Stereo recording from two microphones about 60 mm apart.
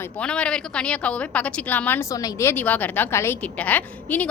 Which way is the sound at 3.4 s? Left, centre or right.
Left.